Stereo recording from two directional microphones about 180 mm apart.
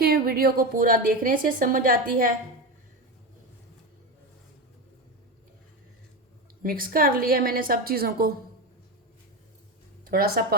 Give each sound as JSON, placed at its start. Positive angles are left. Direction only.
{"t": 0.0, "sound": "a woman's voice", "side_deg": -60}
{"t": 6.6, "sound": "a woman's voice", "side_deg": -50}
{"t": 10.0, "sound": "speech", "side_deg": -55}